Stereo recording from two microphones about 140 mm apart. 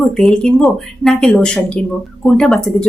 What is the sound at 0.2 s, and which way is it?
Speech, 5° left (ahead or behind).